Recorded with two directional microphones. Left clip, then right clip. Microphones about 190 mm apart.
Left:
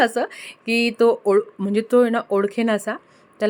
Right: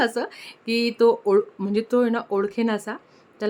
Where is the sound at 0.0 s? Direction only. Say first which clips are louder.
Left 4 dB; 15° left (ahead or behind).